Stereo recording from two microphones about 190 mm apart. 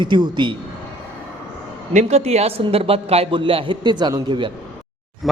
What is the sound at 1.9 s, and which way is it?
A man's voice, 35° right (ahead or behind).